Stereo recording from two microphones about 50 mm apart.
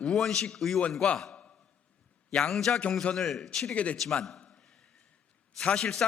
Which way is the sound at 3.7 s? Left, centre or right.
Left.